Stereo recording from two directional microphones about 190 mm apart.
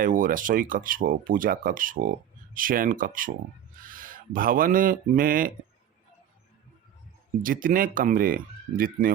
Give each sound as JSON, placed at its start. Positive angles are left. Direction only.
{"t": 0.0, "sound": "speech", "side_deg": -45}
{"t": 7.4, "sound": "speech", "side_deg": -45}